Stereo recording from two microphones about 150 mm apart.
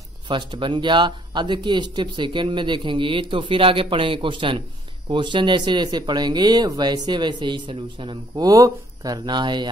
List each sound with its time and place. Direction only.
0.3 s speech: 30° right (ahead or behind)